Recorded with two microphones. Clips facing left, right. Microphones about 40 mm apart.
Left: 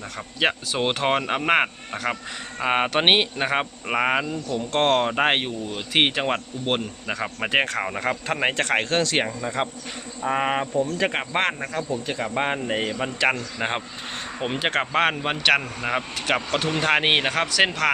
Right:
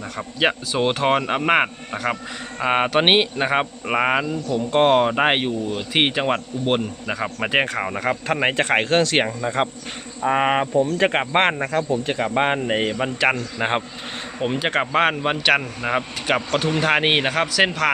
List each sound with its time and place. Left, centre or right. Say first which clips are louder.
0.2 s speech: right 3 dB; centre
8.5 s speech: right 4 dB; right
10.2 s speech: right 4 dB; right
10.8 s speech: right 5 dB; right
12.1 s a man's voice: right 4 dB; right
14.3 s speech: right 3 dB; centre
14.7 s speech: right 2 dB; centre